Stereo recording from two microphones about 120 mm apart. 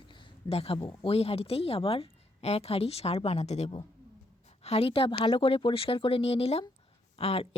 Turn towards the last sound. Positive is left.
turn(degrees=55)  # may be behind; listen again after turning